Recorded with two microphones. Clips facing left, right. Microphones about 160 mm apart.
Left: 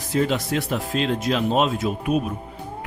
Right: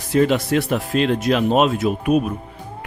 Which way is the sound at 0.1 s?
65° right (ahead or behind).